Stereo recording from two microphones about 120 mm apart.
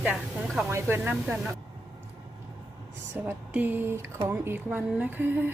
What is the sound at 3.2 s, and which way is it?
Speech, 15° right (ahead or behind).